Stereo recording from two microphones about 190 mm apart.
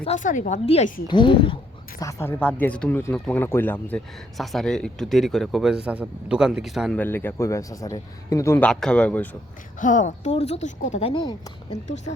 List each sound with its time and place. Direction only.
0.0 s speech: 40° left (ahead or behind); by 7.0 s centre (ahead or behind)
7.0 s a man's voice: 10° left (ahead or behind)
9.8 s speech: 40° left (ahead or behind)
11.1 s speech: 25° left (ahead or behind)